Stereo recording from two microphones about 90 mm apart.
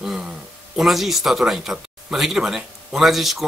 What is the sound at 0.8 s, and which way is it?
A man's voice, centre (ahead or behind).